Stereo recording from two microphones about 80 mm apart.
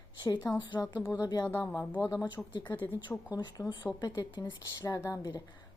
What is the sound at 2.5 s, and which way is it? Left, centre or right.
Speech, left.